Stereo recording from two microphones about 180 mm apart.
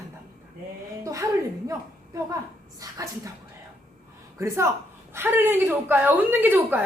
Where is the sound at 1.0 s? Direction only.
20° right (ahead or behind).